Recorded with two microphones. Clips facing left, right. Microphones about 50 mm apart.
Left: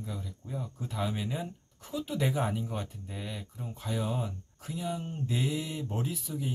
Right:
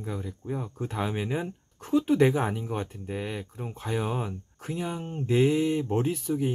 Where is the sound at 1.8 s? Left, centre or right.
Right.